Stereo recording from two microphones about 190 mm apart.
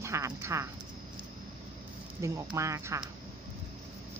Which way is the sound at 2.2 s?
15° right (ahead or behind).